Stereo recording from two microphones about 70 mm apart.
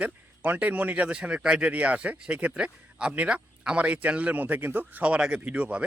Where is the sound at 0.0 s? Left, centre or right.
Right.